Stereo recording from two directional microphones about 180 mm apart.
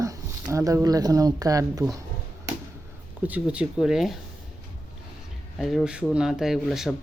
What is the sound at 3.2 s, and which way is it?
Speech, 10° right (ahead or behind).